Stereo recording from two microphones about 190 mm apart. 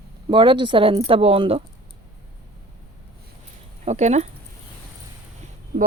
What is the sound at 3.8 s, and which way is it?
Speech, 35° right (ahead or behind).